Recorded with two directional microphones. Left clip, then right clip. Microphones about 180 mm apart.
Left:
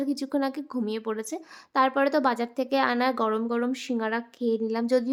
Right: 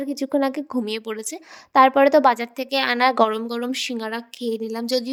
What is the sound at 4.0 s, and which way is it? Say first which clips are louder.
Speech: even; 5° left (ahead or behind).